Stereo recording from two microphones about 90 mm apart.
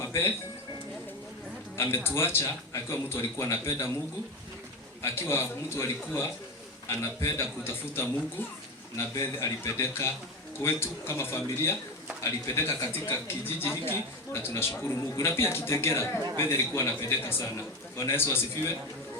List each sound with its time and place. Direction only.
0.0 s speech: 25° left (ahead or behind)
2.0 s a man's voice: 25° left (ahead or behind)
5.0 s a man's voice: 30° left (ahead or behind)